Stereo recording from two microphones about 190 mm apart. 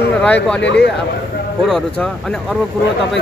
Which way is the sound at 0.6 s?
65° left (ahead or behind).